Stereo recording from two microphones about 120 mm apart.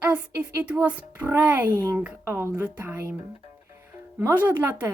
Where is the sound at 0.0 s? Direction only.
10° right (ahead or behind).